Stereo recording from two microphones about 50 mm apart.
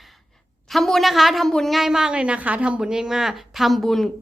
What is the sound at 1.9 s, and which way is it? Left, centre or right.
Speech, centre.